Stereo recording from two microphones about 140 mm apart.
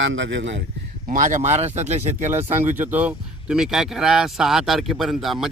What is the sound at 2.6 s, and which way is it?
Speech, 15° right (ahead or behind).